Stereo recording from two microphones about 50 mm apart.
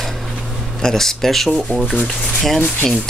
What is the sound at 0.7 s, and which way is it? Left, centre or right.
Speech, centre.